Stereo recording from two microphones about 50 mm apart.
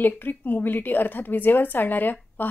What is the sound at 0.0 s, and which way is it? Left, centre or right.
A woman's voice, left.